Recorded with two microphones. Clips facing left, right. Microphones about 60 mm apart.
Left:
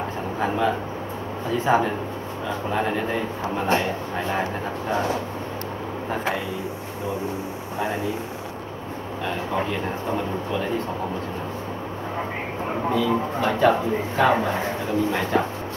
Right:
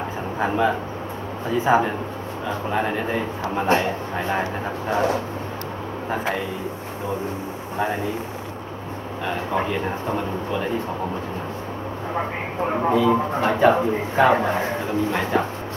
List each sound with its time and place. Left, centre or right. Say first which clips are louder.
0.4 s speech: right 2 dB; centre
9.7 s speech: right 2 dB; centre
12.9 s speech: right 3 dB; centre